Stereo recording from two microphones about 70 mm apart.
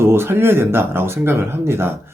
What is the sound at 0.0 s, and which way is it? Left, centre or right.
Speech, right.